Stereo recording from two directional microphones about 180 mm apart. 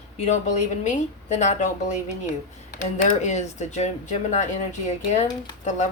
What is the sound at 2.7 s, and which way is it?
Speech, 40° left (ahead or behind).